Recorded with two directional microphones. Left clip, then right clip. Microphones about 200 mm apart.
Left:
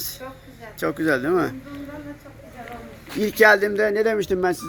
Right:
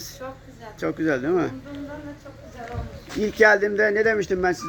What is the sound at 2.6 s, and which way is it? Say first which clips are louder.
Speech: right 2 dB; 5° left (ahead or behind).